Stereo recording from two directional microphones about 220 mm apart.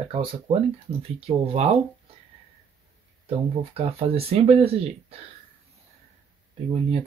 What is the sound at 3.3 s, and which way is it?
Speech, 25° right (ahead or behind).